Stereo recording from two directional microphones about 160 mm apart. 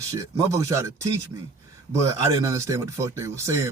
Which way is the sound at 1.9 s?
20° right (ahead or behind).